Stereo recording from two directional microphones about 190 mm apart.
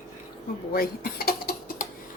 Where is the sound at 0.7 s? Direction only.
50° left (ahead or behind).